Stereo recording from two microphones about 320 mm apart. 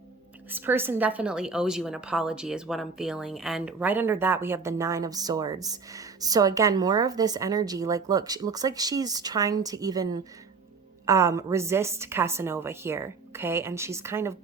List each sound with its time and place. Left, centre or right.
0.5 s a woman's voice: centre